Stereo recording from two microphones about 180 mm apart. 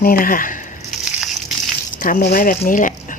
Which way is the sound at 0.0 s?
55° left (ahead or behind).